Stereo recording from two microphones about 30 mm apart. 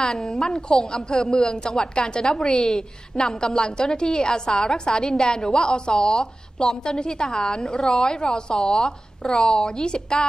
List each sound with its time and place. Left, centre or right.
0.1 s a woman's voice: centre
0.6 s a woman's voice: left